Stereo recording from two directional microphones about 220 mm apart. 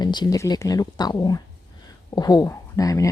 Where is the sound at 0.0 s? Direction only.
20° left (ahead or behind).